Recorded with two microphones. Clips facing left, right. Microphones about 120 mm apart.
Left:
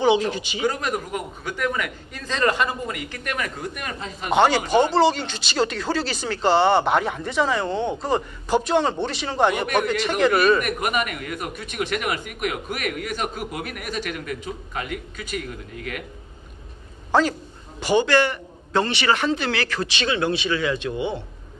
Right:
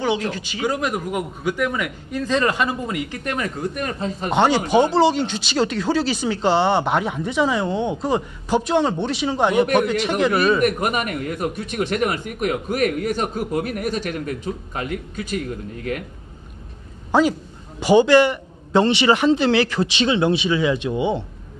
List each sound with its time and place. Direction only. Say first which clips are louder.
0.0 s speech: left 3 dB; 20° left (ahead or behind)
0.7 s a man's voice: right 2 dB; 15° right (ahead or behind); by 4.3 s 35° right (ahead or behind)
4.3 s speech: even; 5° left (ahead or behind)
10.6 s speech: right 4 dB; 35° right (ahead or behind)
17.1 s a man's voice: right 3 dB; 10° right (ahead or behind)